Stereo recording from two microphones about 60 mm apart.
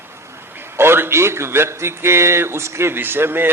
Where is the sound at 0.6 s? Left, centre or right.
Right.